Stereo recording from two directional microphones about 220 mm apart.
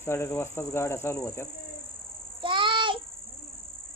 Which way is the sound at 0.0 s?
10° left (ahead or behind).